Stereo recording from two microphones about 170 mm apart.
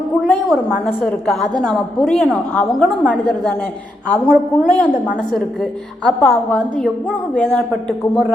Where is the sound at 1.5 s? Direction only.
25° right (ahead or behind).